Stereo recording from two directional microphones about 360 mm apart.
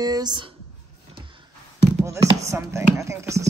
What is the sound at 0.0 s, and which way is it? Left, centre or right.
Speech, centre.